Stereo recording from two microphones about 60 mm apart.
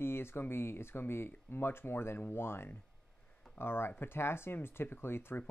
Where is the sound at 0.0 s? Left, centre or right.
Left.